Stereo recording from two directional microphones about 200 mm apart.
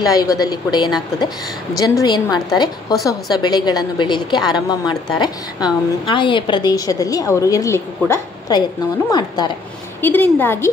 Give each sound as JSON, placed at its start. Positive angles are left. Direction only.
{"t": 0.0, "sound": "a woman's voice", "side_deg": 20}